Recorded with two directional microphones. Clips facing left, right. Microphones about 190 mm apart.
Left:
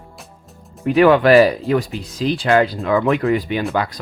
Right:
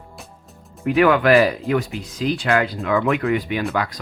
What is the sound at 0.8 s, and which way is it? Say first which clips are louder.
Speech: left 3 dB; 30° left (ahead or behind).